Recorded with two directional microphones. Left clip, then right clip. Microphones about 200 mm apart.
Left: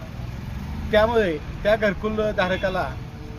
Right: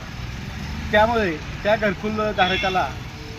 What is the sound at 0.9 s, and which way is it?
Speech, 25° left (ahead or behind).